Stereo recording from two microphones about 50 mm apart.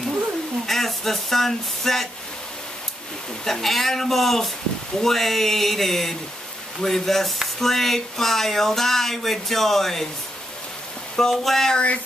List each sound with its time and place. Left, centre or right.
0.7 s speech: centre
3.4 s speech: centre
11.1 s speech: centre
11.7 s speech: left